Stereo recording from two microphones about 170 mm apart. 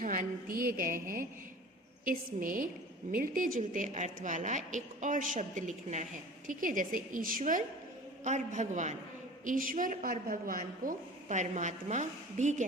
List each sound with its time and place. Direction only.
0.0 s a woman's voice: 55° right (ahead or behind)